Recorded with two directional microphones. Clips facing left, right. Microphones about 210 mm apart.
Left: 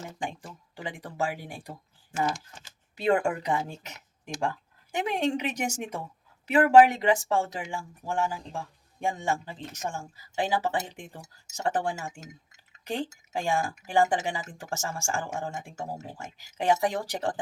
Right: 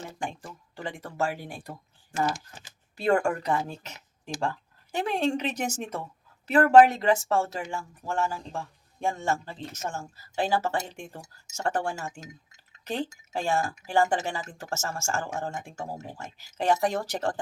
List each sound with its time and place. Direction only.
0.2 s speech: 15° left (ahead or behind)
2.9 s speech: 20° left (ahead or behind)